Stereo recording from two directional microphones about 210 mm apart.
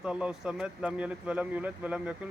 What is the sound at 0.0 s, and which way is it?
Speech, 5° right (ahead or behind).